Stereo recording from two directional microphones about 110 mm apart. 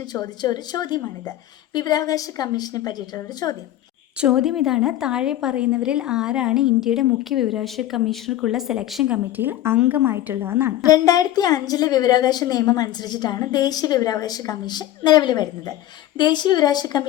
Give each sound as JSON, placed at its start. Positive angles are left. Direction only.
{"t": 0.1, "sound": "a woman's voice", "side_deg": 35}
{"t": 4.2, "sound": "a woman's voice", "side_deg": -5}
{"t": 10.8, "sound": "a woman's voice", "side_deg": 35}